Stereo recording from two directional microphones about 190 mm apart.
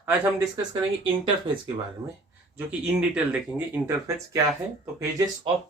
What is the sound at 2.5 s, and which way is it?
Speech, 5° right (ahead or behind).